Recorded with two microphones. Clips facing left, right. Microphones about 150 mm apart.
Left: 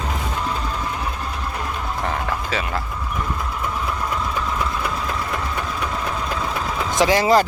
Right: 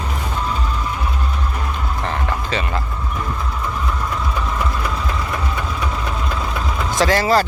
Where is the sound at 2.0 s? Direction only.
5° left (ahead or behind).